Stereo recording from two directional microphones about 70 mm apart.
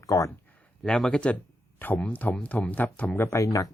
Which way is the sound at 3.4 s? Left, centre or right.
Left.